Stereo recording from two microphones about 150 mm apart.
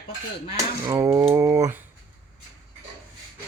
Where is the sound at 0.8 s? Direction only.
20° right (ahead or behind).